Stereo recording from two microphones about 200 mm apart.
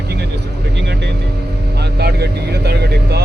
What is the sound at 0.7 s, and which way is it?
Speech, 60° right (ahead or behind).